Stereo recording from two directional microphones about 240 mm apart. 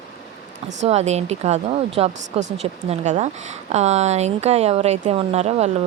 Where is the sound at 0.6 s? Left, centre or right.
Right.